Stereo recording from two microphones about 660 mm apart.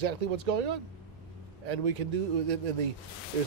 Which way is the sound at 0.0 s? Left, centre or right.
Right.